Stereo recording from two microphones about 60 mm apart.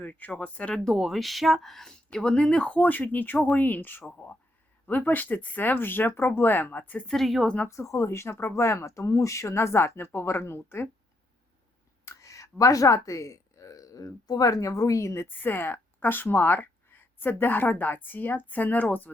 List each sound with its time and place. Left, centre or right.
0.0 s speech: left
0.9 s speech: centre; by 4.0 s left
4.0 s speech: centre
4.9 s speech: left
7.1 s speech: centre
7.4 s speech: left
7.7 s speech: left
12.0 s speech: left
15.3 s speech: left